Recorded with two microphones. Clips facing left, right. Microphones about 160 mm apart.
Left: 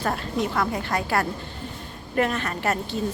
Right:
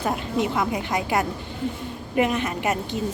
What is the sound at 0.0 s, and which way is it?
Speech, 15° right (ahead or behind).